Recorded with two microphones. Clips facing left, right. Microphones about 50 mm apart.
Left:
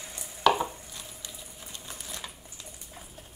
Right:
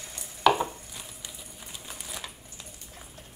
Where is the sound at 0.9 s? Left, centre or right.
Centre.